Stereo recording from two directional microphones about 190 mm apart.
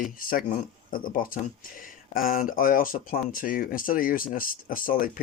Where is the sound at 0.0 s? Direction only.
50° left (ahead or behind).